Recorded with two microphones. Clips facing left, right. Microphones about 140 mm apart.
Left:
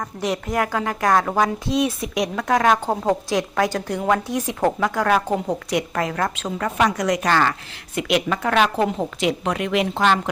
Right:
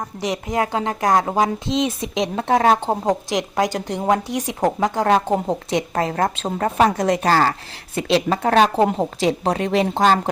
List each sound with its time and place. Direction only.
0.2 s a woman's voice: 20° right (ahead or behind); by 10.2 s 35° right (ahead or behind)